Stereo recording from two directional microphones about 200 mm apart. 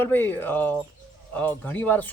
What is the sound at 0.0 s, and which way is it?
Speech, 10° left (ahead or behind).